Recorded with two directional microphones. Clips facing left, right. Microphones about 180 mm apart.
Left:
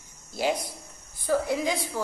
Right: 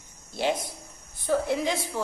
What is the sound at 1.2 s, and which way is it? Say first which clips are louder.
Speech: even; centre (ahead or behind).